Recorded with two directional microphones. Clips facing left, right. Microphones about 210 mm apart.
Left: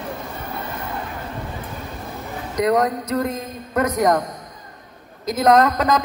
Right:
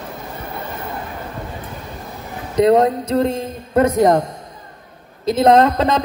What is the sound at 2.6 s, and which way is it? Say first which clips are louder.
A man's voice: right 6 dB; 25° right (ahead or behind).